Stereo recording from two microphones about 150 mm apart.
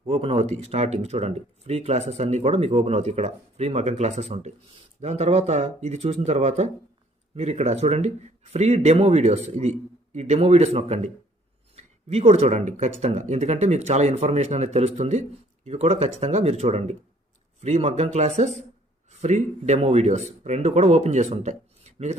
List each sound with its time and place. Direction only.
0.1 s speech: 40° right (ahead or behind)